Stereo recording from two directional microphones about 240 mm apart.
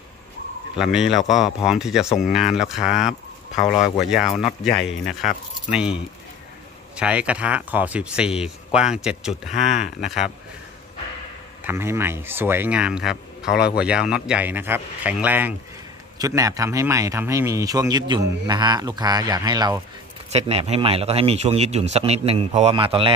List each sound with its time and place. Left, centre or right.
0.7 s speech: centre
11.6 s speech: centre